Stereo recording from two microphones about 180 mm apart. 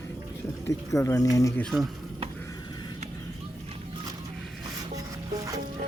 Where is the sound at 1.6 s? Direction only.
Centre (ahead or behind).